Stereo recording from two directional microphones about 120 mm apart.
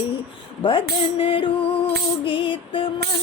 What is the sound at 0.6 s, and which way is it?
Music, 50° left (ahead or behind).